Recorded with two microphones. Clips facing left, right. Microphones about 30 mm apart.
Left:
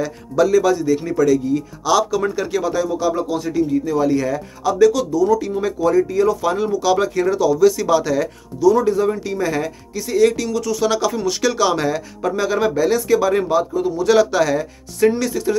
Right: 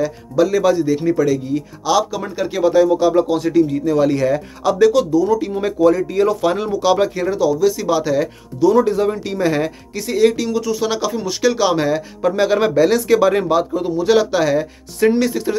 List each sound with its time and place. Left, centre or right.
0.5 s speech: right
1.9 s speech: centre
2.5 s speech: right
3.9 s speech: right
5.1 s speech: right
7.2 s speech: centre
8.5 s speech: right
10.2 s speech: right
12.4 s speech: right
13.9 s speech: centre
15.0 s speech: right